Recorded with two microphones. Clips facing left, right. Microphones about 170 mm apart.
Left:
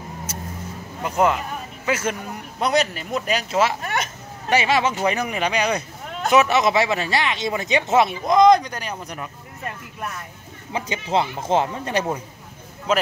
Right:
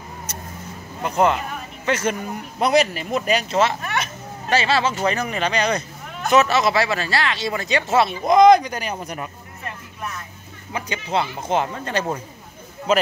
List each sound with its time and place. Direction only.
1.0 s speech: 5° left (ahead or behind)
8.3 s speech: 5° right (ahead or behind)
10.7 s speech: 25° left (ahead or behind)
12.9 s speech: centre (ahead or behind)